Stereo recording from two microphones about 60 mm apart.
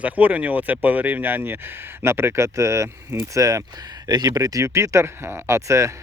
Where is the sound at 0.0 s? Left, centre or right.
Right.